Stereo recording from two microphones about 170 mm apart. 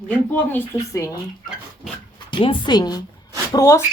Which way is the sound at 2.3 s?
30° left (ahead or behind).